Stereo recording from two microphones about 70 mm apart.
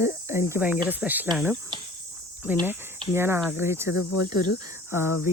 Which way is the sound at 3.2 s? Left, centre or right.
Right.